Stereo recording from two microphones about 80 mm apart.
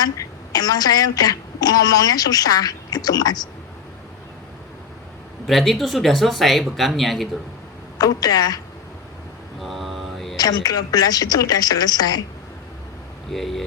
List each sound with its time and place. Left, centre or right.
0.0 s a woman's voice: left
5.5 s speech: centre
7.9 s a woman's voice: left
9.6 s mantra: centre
10.3 s a woman's voice: left
13.3 s speech: centre